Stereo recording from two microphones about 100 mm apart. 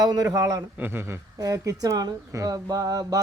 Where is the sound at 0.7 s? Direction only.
20° right (ahead or behind); by 3.2 s 35° right (ahead or behind).